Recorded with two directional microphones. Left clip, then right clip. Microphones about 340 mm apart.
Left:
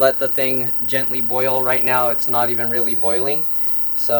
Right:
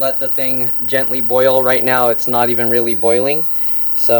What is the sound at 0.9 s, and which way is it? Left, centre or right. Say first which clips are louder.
Speech: right 8 dB; centre.